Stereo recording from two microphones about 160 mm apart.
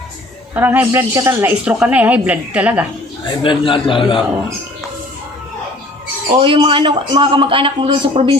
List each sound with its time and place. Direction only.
0.5 s speech: 10° right (ahead or behind)
3.2 s a man's voice: 30° left (ahead or behind)
6.4 s a man's voice: 30° right (ahead or behind)